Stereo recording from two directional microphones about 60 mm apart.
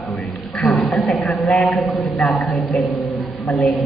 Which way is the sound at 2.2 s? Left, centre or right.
Centre.